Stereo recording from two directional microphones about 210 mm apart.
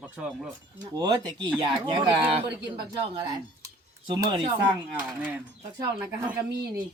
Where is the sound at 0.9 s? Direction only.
20° right (ahead or behind).